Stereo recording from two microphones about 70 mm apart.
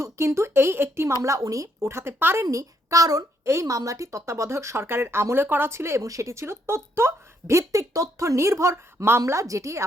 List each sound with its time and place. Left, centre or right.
0.0 s a woman's voice: right
1.8 s speech: right
2.4 s a woman's voice: right
3.4 s speech: right
6.0 s a woman's voice: right